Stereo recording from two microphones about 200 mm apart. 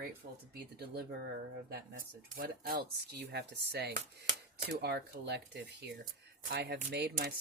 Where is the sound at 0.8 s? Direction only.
55° right (ahead or behind).